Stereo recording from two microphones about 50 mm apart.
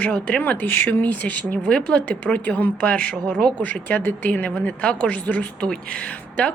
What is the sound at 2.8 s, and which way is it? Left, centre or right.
Speech, left.